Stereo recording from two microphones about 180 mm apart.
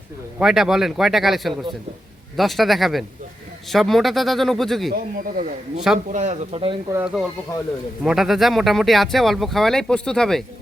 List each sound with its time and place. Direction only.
0.3 s speech: 5° right (ahead or behind)
4.9 s a man's voice: 50° right (ahead or behind)
5.7 s speech: 5° right (ahead or behind)
6.1 s speech: 40° right (ahead or behind)
6.9 s speech: 5° right (ahead or behind)